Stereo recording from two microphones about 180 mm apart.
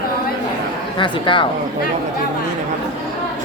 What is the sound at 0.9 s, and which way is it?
Speech, 25° left (ahead or behind).